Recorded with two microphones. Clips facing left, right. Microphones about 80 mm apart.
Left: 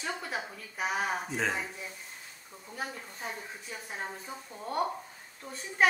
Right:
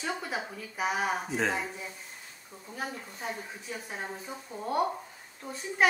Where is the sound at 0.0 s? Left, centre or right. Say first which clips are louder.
Right 2 dB; centre.